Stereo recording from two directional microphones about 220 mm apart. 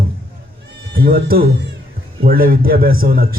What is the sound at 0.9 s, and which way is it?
A man's voice, 40° right (ahead or behind).